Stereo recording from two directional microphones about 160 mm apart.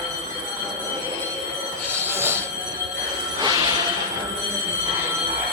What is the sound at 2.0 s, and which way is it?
Train, 15° right (ahead or behind).